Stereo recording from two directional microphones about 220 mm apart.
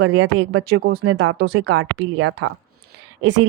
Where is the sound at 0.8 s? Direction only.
45° right (ahead or behind).